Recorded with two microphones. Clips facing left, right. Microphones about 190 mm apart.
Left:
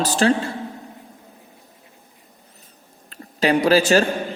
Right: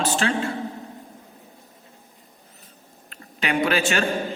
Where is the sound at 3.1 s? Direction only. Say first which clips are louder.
Left 7 dB; 35° left (ahead or behind).